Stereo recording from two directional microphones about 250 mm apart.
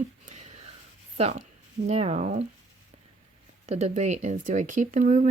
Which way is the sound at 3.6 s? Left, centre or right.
Right.